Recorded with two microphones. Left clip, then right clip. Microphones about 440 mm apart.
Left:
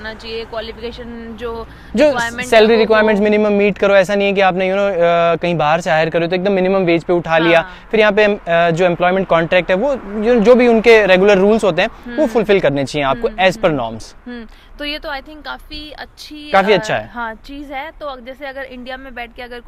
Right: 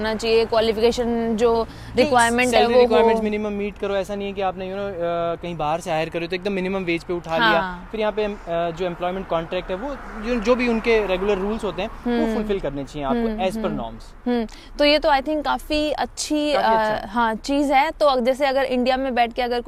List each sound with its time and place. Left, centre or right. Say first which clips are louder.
0.0 s speech: right 7 dB; right
2.1 s speech: right 3 dB; right
2.5 s speech: left 10 dB; left
10.2 s speech: left 11 dB; left
14.3 s speech: right 11 dB; right
15.7 s speech: right 9 dB; right
17.2 s speech: right 5 dB; right
17.6 s a woman's voice: right 10 dB; right